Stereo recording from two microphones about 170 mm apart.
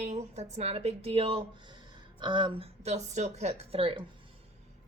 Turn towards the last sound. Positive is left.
turn(degrees=-35)  # may be behind; listen again after turning